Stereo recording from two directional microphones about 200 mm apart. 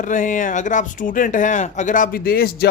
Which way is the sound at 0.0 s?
40° left (ahead or behind).